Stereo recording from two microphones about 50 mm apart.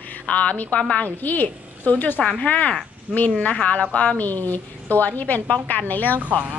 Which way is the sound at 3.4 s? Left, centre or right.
Left.